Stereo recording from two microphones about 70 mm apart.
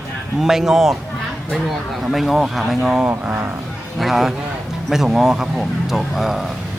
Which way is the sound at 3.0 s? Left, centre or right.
Right.